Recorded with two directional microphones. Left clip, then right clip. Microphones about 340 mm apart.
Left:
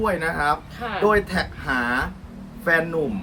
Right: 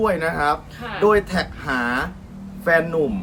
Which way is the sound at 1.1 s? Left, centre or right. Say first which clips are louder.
Right 3 dB; centre.